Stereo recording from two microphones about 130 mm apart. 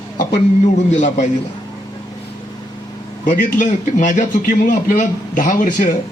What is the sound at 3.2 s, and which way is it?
A man's voice, 80° left.